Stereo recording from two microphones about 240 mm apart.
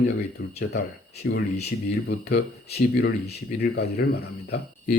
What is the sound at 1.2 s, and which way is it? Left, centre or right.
Speech, left.